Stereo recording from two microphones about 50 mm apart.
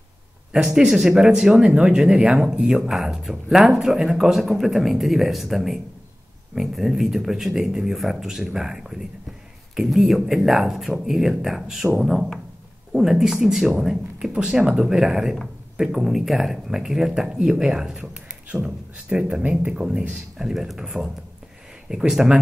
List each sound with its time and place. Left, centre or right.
0.5 s speech: centre
2.9 s speech: centre; by 20.2 s right
20.3 s speech: centre